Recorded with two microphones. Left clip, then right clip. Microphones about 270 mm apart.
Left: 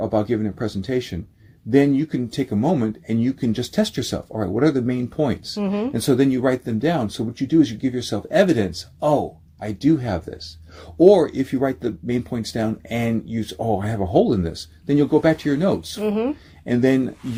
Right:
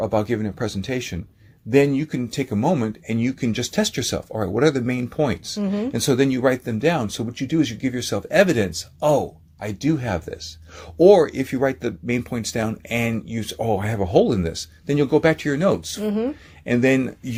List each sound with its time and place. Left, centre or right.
0.0 s speech: right
5.5 s speech: centre
5.9 s speech: right
16.0 s speech: centre
16.6 s speech: right